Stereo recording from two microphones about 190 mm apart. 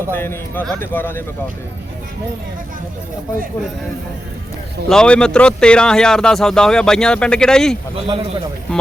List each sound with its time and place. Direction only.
0.1 s a man's voice: 10° left (ahead or behind)
4.9 s speech: 5° left (ahead or behind)
8.0 s a man's voice: 30° right (ahead or behind)